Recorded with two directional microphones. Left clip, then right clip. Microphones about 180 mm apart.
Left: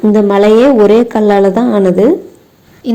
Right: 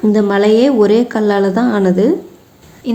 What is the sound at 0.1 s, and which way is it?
A woman's voice, 20° left (ahead or behind).